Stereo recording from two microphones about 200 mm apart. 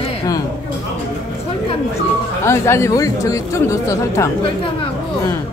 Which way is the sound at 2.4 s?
15° left (ahead or behind).